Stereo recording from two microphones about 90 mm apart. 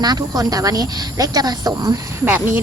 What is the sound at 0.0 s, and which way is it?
A woman's voice, 50° right (ahead or behind).